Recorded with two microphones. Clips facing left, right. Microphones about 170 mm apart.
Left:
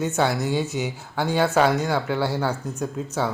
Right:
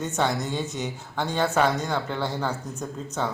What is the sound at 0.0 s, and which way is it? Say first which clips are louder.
Speech: left 3 dB; 5° left (ahead or behind).